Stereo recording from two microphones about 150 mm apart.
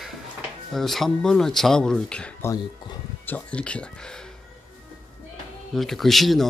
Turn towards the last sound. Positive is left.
turn(degrees=0)  # may be behind; listen again after turning